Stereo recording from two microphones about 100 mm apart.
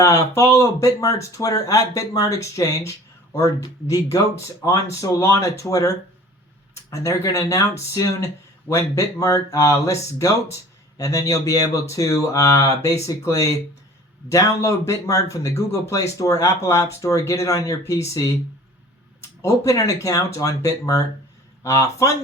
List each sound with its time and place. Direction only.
0.0 s speech: 30° left (ahead or behind)
6.9 s speech: 30° left (ahead or behind)
19.4 s speech: 30° left (ahead or behind)